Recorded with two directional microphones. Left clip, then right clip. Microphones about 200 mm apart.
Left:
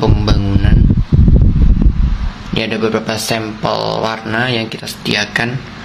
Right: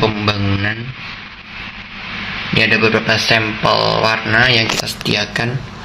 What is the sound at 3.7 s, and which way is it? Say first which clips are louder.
Speech: right 2 dB; centre (ahead or behind).